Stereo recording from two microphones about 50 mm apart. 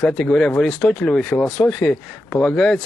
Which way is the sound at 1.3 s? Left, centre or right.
Left.